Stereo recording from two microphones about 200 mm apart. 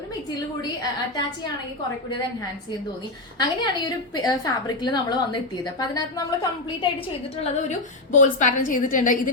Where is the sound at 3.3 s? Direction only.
20° left (ahead or behind).